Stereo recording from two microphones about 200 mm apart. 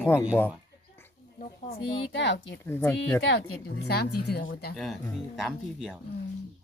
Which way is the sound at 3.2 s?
90° left.